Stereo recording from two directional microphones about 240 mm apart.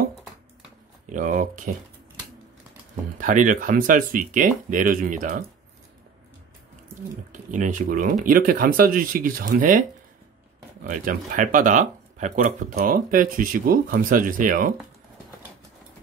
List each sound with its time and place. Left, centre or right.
1.0 s speech: right
3.2 s speech: right
7.5 s speech: right